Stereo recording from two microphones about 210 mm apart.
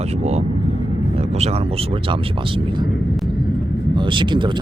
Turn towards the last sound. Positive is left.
turn(degrees=-20)  # may be behind; listen again after turning